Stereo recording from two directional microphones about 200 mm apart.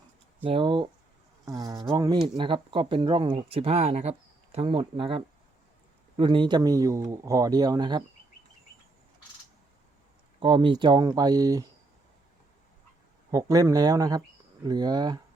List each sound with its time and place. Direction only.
0.4 s speech: 25° right (ahead or behind)
10.4 s speech: 25° right (ahead or behind)
13.3 s speech: 15° right (ahead or behind)